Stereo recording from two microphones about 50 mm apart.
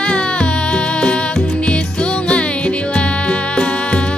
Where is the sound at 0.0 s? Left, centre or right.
Left.